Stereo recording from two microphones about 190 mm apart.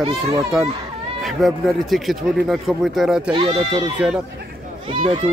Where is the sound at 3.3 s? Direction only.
25° right (ahead or behind).